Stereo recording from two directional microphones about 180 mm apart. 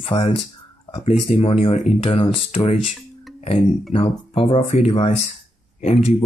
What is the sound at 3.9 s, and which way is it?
Speech, 30° left (ahead or behind).